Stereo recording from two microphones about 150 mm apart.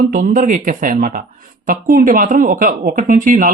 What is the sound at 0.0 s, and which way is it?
Speech, 65° right (ahead or behind).